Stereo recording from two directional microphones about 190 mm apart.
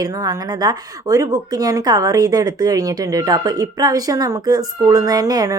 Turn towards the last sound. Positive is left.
turn(degrees=-20)  # may be behind; listen again after turning